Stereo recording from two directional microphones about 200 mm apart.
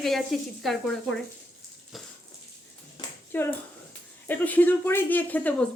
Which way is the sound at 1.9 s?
Centre (ahead or behind).